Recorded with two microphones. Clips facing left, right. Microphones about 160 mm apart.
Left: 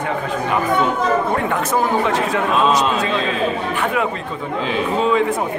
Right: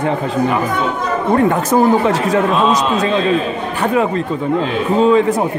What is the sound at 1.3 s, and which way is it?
A man's voice, 40° right (ahead or behind).